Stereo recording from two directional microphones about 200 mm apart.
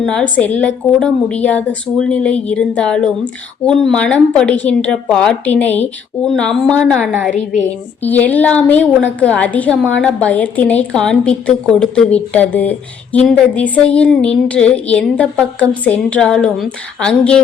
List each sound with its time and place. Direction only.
0.0 s a woman's voice: 5° left (ahead or behind)